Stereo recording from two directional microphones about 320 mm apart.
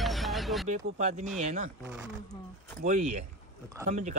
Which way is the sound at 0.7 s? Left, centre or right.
Right.